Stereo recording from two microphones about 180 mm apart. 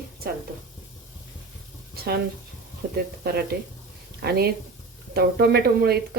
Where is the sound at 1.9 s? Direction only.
60° right (ahead or behind).